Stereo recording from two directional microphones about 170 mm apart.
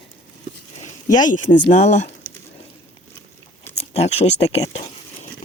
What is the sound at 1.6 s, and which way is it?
Speech, 40° left (ahead or behind).